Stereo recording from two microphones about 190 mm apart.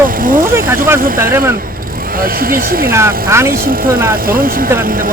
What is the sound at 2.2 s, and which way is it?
Speech, 50° right (ahead or behind).